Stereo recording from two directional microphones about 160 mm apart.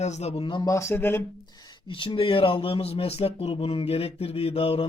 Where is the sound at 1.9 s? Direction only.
30° left (ahead or behind).